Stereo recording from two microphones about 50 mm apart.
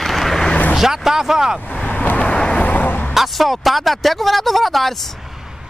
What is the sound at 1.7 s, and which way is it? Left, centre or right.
Vehicle, left.